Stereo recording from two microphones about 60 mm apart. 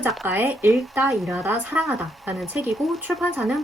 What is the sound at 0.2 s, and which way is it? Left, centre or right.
Speech, right.